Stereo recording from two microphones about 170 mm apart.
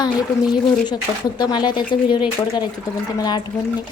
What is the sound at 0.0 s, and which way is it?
A woman's voice, 25° left (ahead or behind).